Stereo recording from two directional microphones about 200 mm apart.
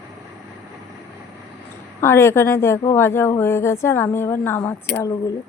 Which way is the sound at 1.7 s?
10° left (ahead or behind).